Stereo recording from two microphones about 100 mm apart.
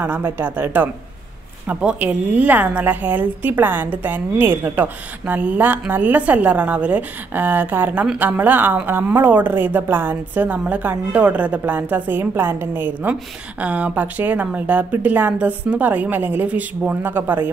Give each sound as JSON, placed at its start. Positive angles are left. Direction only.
{"t": 0.0, "sound": "a woman's voice", "side_deg": -20}